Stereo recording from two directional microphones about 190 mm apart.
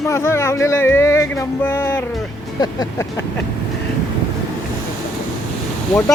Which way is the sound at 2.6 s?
20° left (ahead or behind).